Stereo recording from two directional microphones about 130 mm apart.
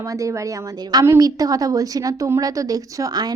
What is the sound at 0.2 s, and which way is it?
A woman's voice, 25° right (ahead or behind).